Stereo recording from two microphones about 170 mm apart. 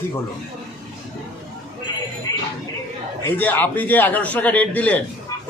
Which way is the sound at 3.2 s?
10° left (ahead or behind).